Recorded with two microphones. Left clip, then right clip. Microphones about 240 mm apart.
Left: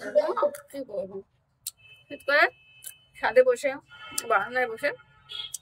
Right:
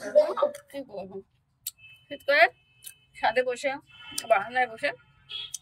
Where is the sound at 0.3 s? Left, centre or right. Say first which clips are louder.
Left 1 dB; centre.